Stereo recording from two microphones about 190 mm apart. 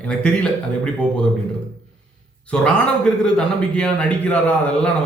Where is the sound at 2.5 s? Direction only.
5° left (ahead or behind).